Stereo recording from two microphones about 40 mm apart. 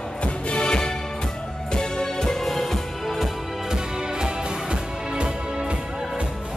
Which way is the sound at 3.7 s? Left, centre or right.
Centre.